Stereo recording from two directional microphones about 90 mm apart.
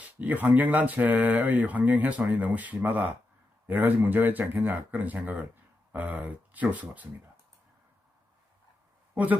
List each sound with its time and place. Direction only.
0.2 s speech: 20° right (ahead or behind)
9.1 s speech: 15° right (ahead or behind)